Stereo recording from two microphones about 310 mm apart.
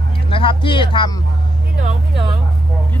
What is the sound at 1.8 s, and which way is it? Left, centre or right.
Speech, centre.